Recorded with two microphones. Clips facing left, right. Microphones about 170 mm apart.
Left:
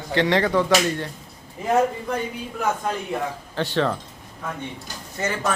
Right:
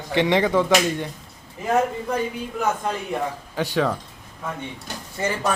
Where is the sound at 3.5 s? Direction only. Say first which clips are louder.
Even; 10° right (ahead or behind).